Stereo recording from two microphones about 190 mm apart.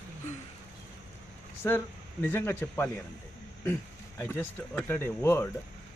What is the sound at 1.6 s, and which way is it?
Speech, 15° left (ahead or behind).